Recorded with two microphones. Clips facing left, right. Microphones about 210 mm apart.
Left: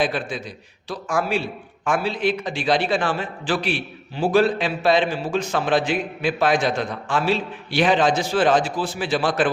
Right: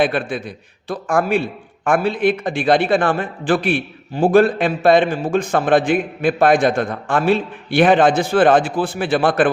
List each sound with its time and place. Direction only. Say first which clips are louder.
0.0 s a man's voice: right 5 dB; 60° right (ahead or behind)